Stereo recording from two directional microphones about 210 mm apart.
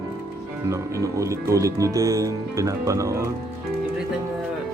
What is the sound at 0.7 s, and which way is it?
Speech, 15° right (ahead or behind).